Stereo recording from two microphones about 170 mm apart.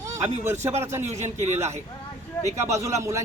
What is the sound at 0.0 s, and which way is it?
A man's voice, 15° right (ahead or behind).